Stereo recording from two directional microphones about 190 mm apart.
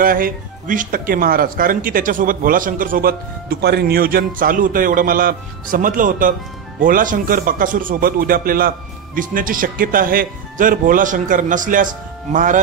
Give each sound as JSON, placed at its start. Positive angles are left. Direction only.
{"t": 0.0, "sound": "speech", "side_deg": -50}